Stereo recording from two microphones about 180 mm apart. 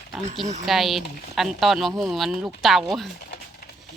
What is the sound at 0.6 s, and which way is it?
Speech, centre (ahead or behind).